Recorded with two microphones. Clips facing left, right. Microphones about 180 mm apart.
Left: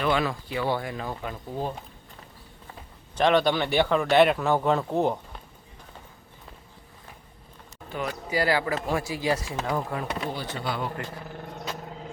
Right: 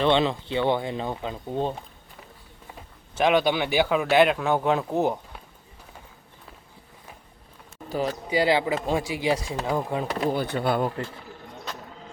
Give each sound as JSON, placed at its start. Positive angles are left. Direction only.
{"t": 0.0, "sound": "speech", "side_deg": -25}
{"t": 3.2, "sound": "speech", "side_deg": -5}
{"t": 7.9, "sound": "speech", "side_deg": -35}
{"t": 8.3, "sound": "speech", "side_deg": -20}
{"t": 10.2, "sound": "speech", "side_deg": -55}